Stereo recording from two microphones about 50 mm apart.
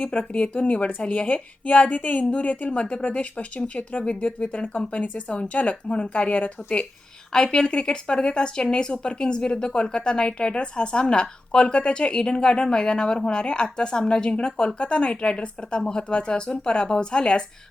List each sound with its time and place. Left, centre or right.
0.0 s speech: left